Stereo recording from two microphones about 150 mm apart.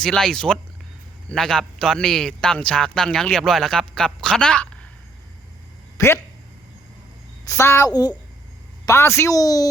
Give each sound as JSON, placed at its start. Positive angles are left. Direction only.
{"t": 0.0, "sound": "a man's voice", "side_deg": 5}
{"t": 6.0, "sound": "speech", "side_deg": 20}
{"t": 7.4, "sound": "a woman's voice", "side_deg": 20}